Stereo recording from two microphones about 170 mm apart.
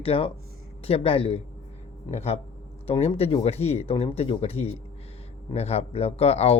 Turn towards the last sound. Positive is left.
turn(degrees=35)  # may be behind; listen again after turning